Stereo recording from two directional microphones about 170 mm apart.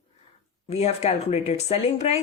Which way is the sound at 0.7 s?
40° left (ahead or behind).